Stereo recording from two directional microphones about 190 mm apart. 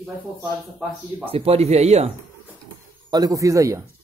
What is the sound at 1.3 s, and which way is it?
Speech, 30° right (ahead or behind).